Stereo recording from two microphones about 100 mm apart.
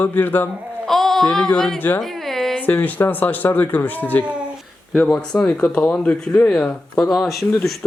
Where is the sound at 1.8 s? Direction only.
20° left (ahead or behind).